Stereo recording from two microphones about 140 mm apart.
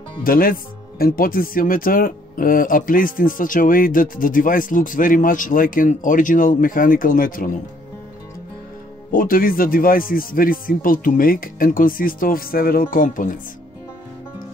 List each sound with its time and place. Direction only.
0.2 s speech: 90° left
9.1 s speech: 90° left; by 13.4 s 75° left (ahead or behind)